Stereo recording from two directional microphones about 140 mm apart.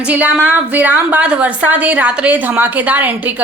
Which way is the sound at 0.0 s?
10° right (ahead or behind).